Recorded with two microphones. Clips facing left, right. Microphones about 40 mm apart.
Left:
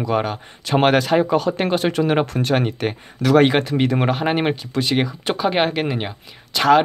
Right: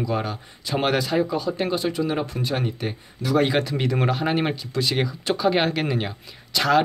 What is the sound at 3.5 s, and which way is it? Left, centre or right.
Speech, left.